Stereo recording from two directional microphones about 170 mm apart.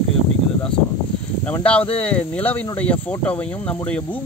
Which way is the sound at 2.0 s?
10° left (ahead or behind).